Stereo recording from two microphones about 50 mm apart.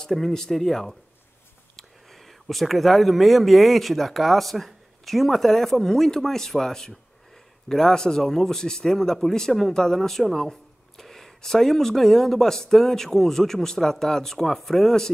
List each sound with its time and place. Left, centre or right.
0.0 s a man's voice: centre